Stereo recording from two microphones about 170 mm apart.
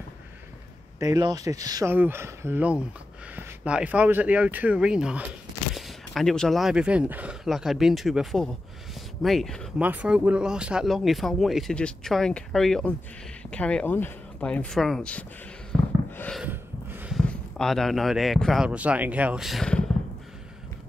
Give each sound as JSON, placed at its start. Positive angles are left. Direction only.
{"t": 0.9, "sound": "speech", "side_deg": -20}
{"t": 9.8, "sound": "speech", "side_deg": -10}
{"t": 15.7, "sound": "a sound", "side_deg": 5}
{"t": 16.4, "sound": "gasp", "side_deg": -10}
{"t": 17.3, "sound": "speech", "side_deg": 5}